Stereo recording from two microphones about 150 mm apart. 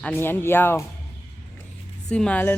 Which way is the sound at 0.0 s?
15° left (ahead or behind).